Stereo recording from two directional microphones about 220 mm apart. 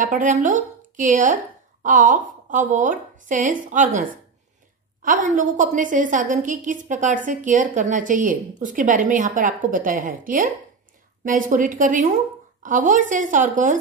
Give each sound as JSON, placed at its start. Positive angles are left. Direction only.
{"t": 0.0, "sound": "speech", "side_deg": -35}
{"t": 5.0, "sound": "a woman's voice", "side_deg": -35}